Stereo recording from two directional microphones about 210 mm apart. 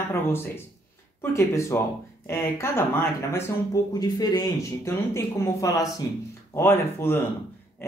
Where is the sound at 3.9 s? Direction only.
20° left (ahead or behind).